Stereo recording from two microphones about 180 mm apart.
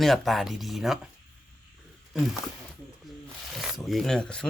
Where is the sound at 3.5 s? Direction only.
Centre (ahead or behind).